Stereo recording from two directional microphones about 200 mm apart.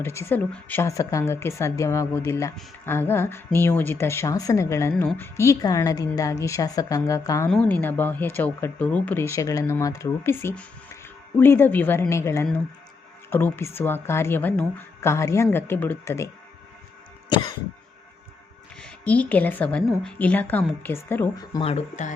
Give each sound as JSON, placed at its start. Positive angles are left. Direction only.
{"t": 0.0, "sound": "speech", "side_deg": 10}
{"t": 18.8, "sound": "speech", "side_deg": 5}